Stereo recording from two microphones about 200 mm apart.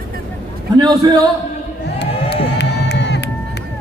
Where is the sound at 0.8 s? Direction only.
20° right (ahead or behind).